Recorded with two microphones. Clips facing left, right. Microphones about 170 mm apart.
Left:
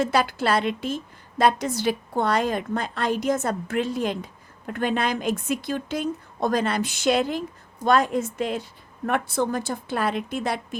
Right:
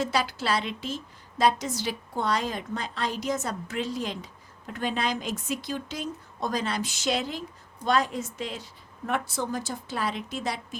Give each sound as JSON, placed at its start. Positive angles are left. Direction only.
{"t": 0.0, "sound": "a woman's voice", "side_deg": 55}